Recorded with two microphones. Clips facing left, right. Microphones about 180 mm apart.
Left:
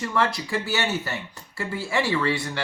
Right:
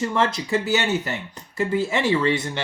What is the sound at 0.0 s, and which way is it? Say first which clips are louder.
Speech: right 2 dB; 20° right (ahead or behind).